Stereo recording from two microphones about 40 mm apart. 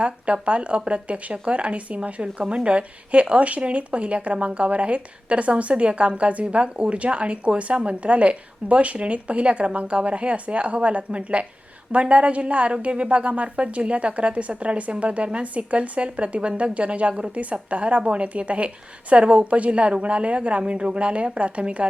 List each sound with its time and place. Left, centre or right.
0.4 s speech: right
2.2 s a woman's voice: right